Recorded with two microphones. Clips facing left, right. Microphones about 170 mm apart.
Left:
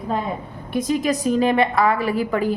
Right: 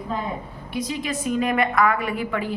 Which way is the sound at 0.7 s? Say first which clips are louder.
Left 7 dB; 45° left (ahead or behind).